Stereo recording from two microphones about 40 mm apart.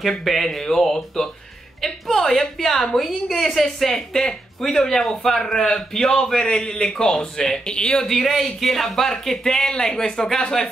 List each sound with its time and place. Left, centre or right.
0.0 s a woman's voice: centre; by 8.0 s left
8.0 s a woman's voice: centre